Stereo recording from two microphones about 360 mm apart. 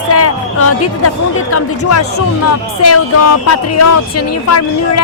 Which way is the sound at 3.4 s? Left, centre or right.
Left.